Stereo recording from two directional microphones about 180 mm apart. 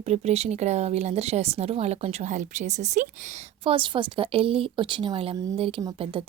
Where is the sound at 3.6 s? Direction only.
30° right (ahead or behind).